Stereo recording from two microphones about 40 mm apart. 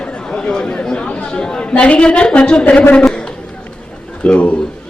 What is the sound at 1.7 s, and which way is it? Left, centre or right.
Speech, left.